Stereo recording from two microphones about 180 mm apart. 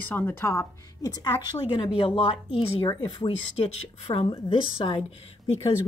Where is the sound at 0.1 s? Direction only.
10° left (ahead or behind).